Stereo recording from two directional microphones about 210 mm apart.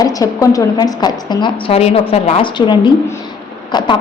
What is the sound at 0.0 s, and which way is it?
A woman's voice, 15° left (ahead or behind).